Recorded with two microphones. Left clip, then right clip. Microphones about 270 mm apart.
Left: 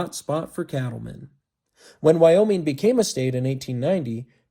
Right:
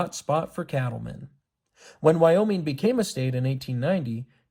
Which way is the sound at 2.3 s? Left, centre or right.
Centre.